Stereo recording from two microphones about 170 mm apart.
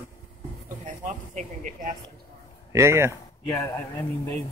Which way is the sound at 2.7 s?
15° right (ahead or behind).